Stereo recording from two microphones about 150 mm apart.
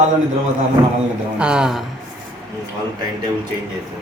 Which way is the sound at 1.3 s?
5° right (ahead or behind).